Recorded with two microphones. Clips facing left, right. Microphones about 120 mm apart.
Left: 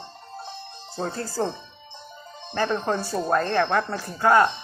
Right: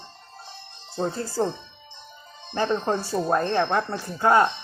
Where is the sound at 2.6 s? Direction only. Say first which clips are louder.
Even; 20° right (ahead or behind).